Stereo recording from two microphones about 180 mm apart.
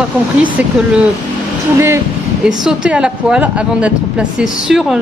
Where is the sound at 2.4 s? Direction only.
5° right (ahead or behind).